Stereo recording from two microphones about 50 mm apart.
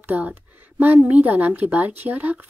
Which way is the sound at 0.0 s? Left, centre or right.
Right.